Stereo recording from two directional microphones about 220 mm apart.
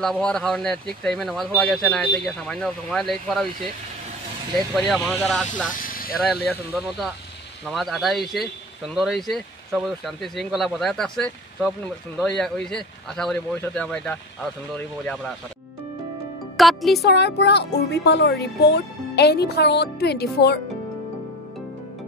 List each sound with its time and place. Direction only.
0.0 s speech: 5° left (ahead or behind)
4.7 s speech: centre (ahead or behind)
5.7 s vehicle: 40° left (ahead or behind)
6.2 s speech: centre (ahead or behind)
7.6 s speech: centre (ahead or behind)
16.5 s speech: centre (ahead or behind)
17.0 s speech: 50° left (ahead or behind)